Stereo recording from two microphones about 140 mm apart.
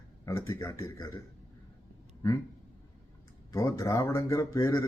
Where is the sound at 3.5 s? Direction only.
20° left (ahead or behind).